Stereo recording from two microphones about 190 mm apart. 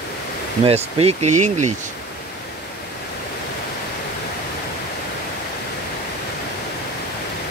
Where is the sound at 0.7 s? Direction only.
30° right (ahead or behind).